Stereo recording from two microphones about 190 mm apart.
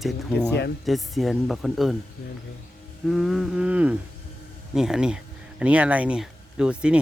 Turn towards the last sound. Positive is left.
turn(degrees=-5)  # may be behind; listen again after turning